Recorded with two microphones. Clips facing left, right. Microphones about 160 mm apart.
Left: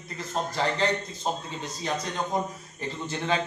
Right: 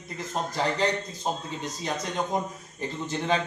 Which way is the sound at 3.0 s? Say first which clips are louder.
Right 1 dB; 15° right (ahead or behind).